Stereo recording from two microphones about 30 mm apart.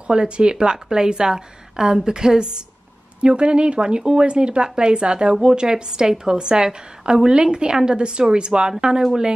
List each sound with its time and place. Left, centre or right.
0.0 s a woman's voice: right